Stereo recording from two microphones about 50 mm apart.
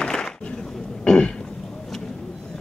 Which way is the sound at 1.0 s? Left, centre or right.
Centre.